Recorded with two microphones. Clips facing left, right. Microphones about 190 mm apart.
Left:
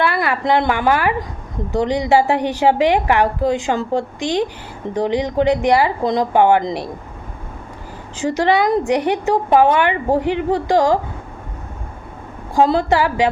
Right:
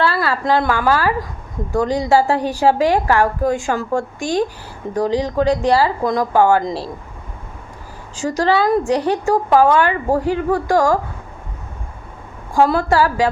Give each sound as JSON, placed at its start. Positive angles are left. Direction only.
{"t": 0.0, "sound": "a woman's voice", "side_deg": 20}
{"t": 8.1, "sound": "a woman's voice", "side_deg": 20}
{"t": 12.5, "sound": "a woman's voice", "side_deg": 20}